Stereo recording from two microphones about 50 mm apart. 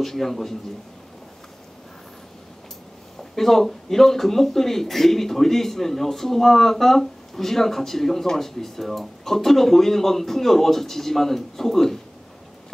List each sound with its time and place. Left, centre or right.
0.0 s speech: centre
3.3 s speech: centre